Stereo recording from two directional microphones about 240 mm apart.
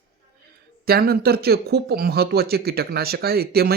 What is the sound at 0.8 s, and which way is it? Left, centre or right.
Speech, right.